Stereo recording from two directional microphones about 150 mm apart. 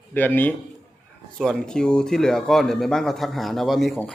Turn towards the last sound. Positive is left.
turn(degrees=0)  # may be behind; listen again after turning